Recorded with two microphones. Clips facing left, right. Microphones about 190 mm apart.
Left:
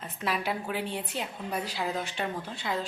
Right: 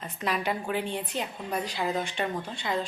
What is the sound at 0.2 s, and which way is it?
A woman's voice, 5° left (ahead or behind).